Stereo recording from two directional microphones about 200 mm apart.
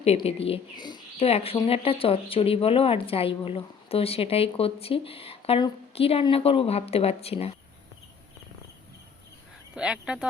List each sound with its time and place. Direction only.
0.0 s speech: 30° left (ahead or behind)
9.7 s speech: 5° right (ahead or behind)